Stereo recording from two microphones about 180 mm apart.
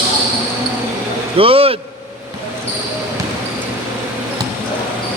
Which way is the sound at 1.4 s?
30° right (ahead or behind).